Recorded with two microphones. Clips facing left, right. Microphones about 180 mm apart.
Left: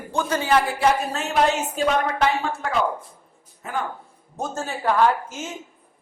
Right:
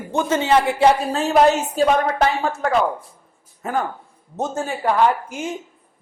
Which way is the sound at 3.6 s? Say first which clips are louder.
Right 6 dB; 45° right (ahead or behind).